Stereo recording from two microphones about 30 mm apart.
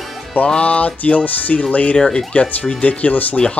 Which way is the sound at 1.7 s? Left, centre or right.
Left.